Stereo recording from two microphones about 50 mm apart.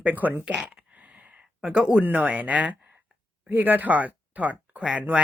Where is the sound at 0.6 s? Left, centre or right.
Right.